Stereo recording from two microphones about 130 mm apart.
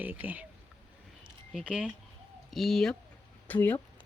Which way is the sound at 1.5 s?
10° right (ahead or behind).